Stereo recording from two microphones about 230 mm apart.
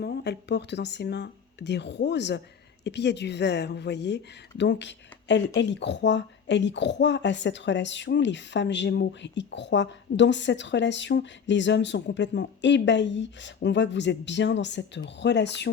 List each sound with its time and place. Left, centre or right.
0.0 s speech: left